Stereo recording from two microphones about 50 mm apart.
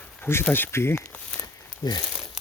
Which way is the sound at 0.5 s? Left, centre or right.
Left.